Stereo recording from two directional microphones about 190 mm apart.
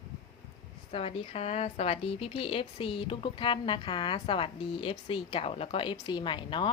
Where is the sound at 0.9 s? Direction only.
30° left (ahead or behind).